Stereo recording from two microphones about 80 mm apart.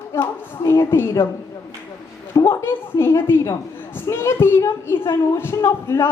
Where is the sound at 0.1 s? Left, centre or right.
Left.